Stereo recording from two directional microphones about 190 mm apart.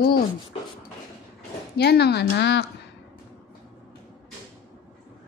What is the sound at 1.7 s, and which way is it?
Speech, 60° left (ahead or behind).